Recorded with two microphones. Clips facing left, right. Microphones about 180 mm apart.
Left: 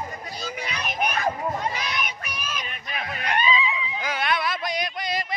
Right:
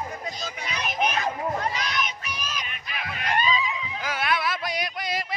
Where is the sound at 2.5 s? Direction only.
35° left (ahead or behind).